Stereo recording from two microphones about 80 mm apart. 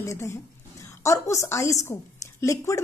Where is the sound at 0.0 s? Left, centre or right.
Left.